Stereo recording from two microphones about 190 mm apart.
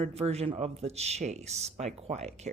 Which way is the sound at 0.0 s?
35° right (ahead or behind).